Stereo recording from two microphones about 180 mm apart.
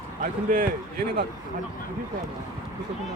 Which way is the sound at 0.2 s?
50° right (ahead or behind).